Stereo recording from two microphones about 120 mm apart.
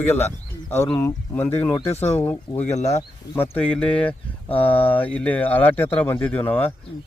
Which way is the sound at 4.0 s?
15° left (ahead or behind).